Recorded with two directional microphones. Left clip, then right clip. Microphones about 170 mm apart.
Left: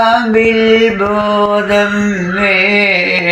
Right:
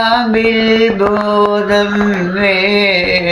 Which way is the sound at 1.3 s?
15° left (ahead or behind).